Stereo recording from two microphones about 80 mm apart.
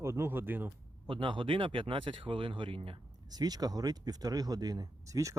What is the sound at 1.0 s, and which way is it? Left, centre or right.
Speech, right.